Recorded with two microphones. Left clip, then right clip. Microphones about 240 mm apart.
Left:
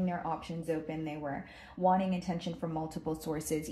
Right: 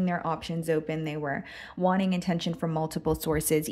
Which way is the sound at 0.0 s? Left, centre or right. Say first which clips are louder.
Right 6 dB; right.